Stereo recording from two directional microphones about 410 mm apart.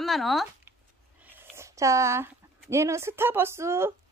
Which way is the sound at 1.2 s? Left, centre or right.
Centre.